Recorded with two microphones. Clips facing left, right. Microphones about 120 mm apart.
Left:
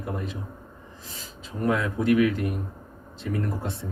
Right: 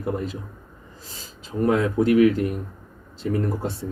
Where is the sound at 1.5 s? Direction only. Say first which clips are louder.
Right 5 dB; 30° right (ahead or behind).